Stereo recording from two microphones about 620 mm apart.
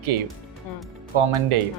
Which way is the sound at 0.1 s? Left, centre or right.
Right.